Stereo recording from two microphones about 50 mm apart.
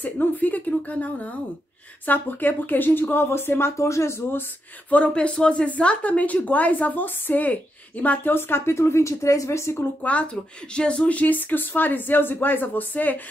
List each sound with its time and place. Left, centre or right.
0.0 s speech: left
4.9 s a woman's voice: left
8.7 s speech: left
10.0 s speech: left